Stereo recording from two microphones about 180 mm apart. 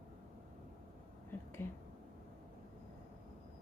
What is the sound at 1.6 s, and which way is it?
Speech, 15° left (ahead or behind).